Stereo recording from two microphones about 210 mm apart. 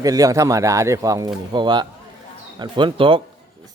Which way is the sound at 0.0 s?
15° right (ahead or behind).